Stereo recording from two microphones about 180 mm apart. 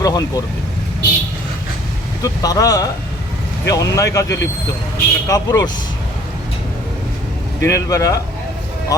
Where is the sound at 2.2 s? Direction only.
20° left (ahead or behind).